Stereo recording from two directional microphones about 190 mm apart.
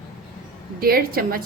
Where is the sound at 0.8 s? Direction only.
50° right (ahead or behind).